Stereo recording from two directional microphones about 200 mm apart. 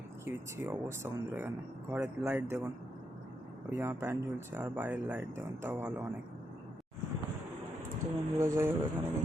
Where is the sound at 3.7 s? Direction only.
10° right (ahead or behind).